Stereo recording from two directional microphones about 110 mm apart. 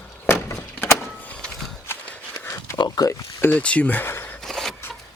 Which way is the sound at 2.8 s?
30° left (ahead or behind).